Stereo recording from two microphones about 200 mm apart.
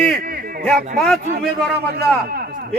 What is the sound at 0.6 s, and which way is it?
Speech, centre (ahead or behind).